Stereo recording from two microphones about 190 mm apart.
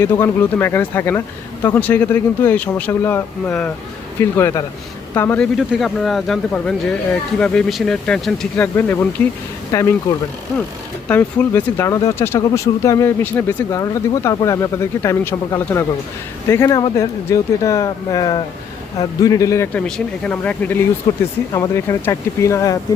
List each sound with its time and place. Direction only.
0.0 s speech: 10° left (ahead or behind)
5.5 s speech: centre (ahead or behind); by 9.9 s 15° left (ahead or behind)
11.1 s speech: 10° left (ahead or behind)